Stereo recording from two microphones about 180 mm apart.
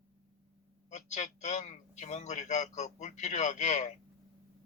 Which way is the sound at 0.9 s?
40° left (ahead or behind).